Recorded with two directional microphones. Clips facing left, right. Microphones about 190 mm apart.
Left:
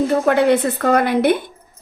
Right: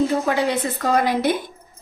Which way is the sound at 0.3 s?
60° left (ahead or behind).